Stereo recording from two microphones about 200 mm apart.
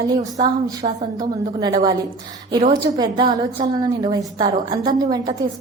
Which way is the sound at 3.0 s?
20° right (ahead or behind).